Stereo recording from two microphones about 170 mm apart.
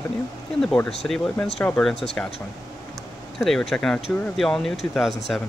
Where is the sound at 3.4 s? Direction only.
Centre (ahead or behind).